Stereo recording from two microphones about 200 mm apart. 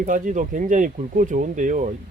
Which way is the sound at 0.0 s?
40° right (ahead or behind).